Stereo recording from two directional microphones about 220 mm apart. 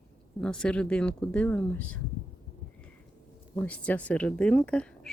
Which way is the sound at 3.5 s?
5° left (ahead or behind).